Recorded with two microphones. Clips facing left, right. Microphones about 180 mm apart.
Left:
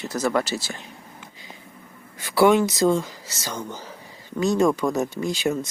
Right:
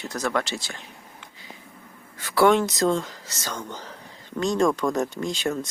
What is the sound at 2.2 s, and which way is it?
Speech, 10° left (ahead or behind).